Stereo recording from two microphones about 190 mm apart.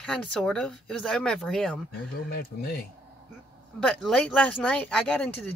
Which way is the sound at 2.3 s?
55° left (ahead or behind).